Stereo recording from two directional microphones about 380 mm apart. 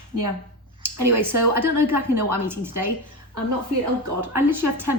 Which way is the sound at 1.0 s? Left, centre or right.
Right.